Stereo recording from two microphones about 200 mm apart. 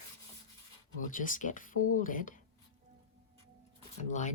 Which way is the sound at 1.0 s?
40° left (ahead or behind).